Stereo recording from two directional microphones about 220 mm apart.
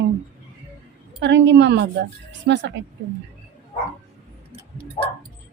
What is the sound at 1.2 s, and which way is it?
A woman's voice, 55° right (ahead or behind).